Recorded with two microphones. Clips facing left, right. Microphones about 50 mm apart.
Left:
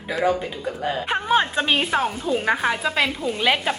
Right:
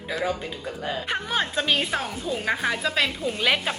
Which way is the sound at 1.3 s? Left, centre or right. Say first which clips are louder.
Left 5 dB; left.